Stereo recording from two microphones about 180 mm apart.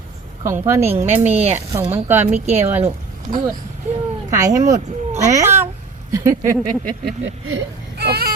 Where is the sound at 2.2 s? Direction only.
35° right (ahead or behind).